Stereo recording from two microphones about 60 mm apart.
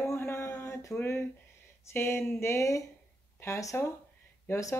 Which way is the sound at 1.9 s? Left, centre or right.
Left.